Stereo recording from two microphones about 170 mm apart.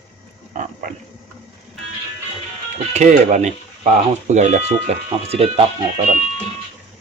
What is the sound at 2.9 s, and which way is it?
Speech, 45° right (ahead or behind).